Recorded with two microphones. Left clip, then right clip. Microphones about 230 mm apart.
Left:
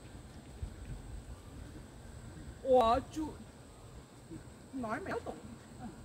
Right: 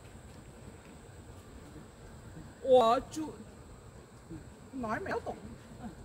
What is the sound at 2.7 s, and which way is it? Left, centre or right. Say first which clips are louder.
Speech: right 3 dB; right.